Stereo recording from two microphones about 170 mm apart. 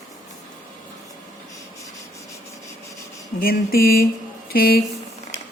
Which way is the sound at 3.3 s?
60° left (ahead or behind).